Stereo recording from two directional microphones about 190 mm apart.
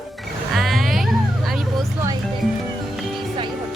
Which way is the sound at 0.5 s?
Centre (ahead or behind).